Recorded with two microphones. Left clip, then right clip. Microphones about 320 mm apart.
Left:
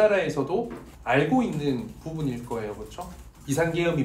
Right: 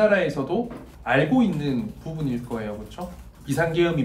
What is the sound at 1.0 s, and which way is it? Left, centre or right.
Speech, centre.